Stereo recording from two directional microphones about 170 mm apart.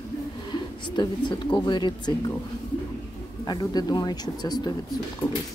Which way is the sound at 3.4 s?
25° left (ahead or behind).